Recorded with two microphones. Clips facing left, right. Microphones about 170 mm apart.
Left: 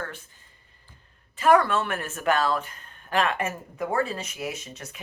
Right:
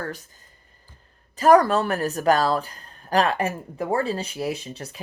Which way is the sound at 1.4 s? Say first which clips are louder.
Right 4 dB; 40° right (ahead or behind).